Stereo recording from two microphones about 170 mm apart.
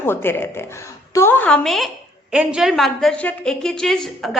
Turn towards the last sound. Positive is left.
turn(degrees=0)  # may be behind; listen again after turning